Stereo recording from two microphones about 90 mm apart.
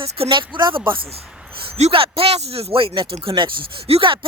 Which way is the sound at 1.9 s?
90° right.